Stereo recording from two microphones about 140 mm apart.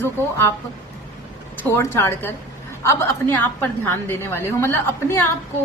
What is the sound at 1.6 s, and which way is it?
A woman's voice, 20° left (ahead or behind).